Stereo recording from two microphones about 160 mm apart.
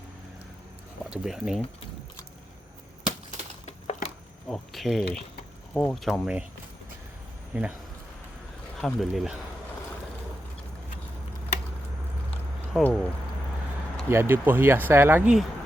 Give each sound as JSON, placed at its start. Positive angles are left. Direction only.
{"t": 1.1, "sound": "speech", "side_deg": -5}
{"t": 3.7, "sound": "a sound", "side_deg": 45}
{"t": 4.4, "sound": "speech", "side_deg": 0}
{"t": 7.5, "sound": "speech", "side_deg": -10}
{"t": 8.8, "sound": "speech", "side_deg": 0}
{"t": 12.8, "sound": "speech", "side_deg": 5}
{"t": 14.1, "sound": "speech", "side_deg": -15}